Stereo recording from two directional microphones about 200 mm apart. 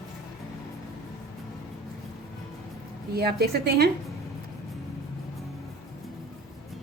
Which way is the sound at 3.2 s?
50° right (ahead or behind).